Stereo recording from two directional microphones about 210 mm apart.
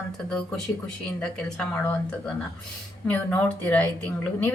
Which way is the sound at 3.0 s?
5° left (ahead or behind).